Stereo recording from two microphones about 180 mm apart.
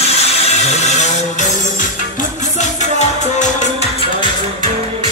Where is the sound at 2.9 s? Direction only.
40° left (ahead or behind).